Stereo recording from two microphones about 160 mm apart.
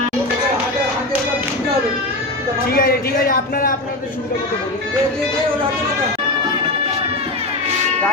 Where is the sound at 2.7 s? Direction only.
65° left (ahead or behind).